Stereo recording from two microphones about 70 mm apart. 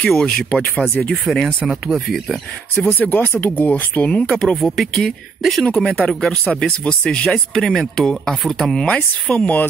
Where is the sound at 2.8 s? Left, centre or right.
Left; by 8.8 s centre.